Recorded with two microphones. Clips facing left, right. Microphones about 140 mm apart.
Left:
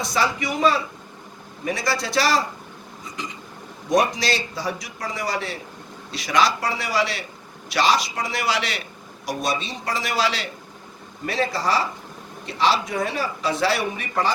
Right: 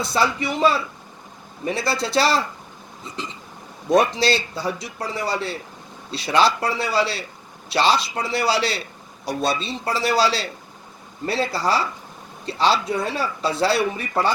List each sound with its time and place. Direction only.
0.0 s a man's voice: 30° right (ahead or behind)
3.9 s a man's voice: 30° right (ahead or behind)